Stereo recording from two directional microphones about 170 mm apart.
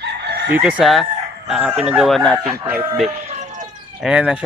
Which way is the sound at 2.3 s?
15° right (ahead or behind).